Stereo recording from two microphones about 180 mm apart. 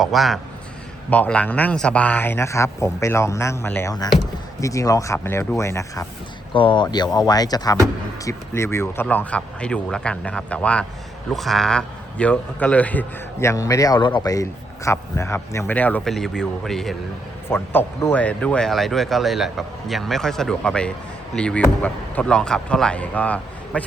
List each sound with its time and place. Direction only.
0.0 s a man's voice: centre (ahead or behind); by 6.1 s 15° left (ahead or behind)
6.5 s a man's voice: 30° left (ahead or behind); by 17.0 s centre (ahead or behind)
17.5 s a man's voice: 10° left (ahead or behind)